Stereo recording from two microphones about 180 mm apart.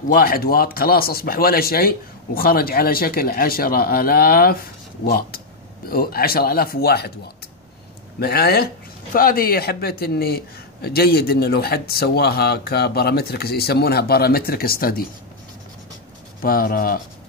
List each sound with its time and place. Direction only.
0.1 s speech: 55° left (ahead or behind)
8.2 s speech: 60° left (ahead or behind)
16.3 s speech: 55° left (ahead or behind)